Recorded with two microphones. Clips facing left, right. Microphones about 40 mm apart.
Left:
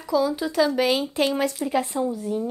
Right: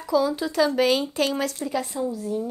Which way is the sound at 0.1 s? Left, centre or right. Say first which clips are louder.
Even; centre.